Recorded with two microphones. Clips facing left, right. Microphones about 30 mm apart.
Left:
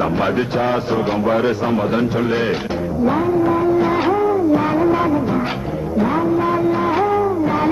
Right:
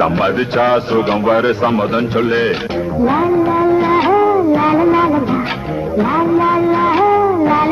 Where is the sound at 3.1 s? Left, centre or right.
Right.